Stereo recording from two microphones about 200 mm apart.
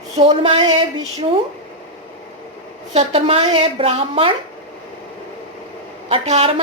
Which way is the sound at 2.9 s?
30° right (ahead or behind).